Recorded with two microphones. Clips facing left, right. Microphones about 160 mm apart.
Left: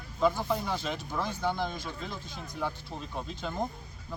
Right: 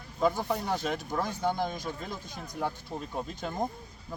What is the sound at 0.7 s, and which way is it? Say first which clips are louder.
Speech: right 3 dB; 45° right (ahead or behind).